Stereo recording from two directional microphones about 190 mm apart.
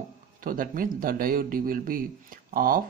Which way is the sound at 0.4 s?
45° right (ahead or behind).